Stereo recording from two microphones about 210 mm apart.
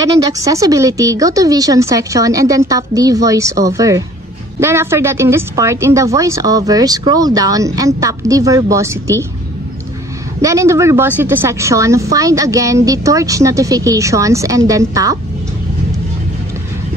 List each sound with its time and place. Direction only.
0.0 s a woman's voice: 15° right (ahead or behind)
10.4 s a woman's voice: 15° right (ahead or behind)